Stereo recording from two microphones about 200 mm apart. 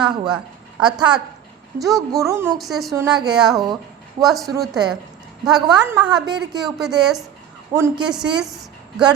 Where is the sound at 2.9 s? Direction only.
20° right (ahead or behind).